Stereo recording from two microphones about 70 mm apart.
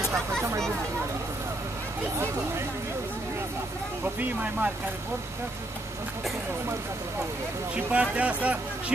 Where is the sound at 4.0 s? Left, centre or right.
Right.